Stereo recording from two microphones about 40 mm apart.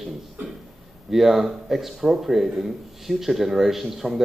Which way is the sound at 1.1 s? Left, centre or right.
Centre.